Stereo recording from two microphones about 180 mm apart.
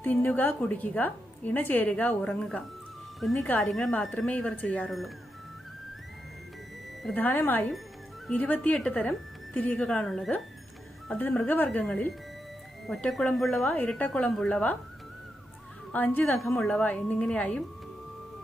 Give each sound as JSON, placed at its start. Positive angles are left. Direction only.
{"t": 0.0, "sound": "a woman's voice", "side_deg": 10}
{"t": 7.0, "sound": "a woman's voice", "side_deg": 5}
{"t": 15.9, "sound": "a woman's voice", "side_deg": 10}